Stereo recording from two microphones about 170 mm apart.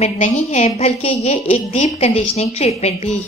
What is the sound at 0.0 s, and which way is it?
A woman's voice, 40° left (ahead or behind).